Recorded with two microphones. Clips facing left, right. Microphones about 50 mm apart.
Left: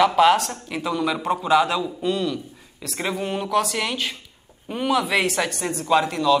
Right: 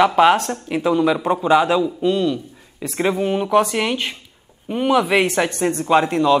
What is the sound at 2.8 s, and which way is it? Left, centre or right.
Speech, centre.